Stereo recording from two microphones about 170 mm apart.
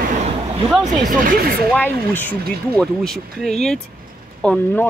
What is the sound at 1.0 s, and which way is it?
Speech, 55° right (ahead or behind).